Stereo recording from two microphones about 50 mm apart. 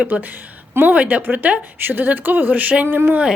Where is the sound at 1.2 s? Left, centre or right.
Right.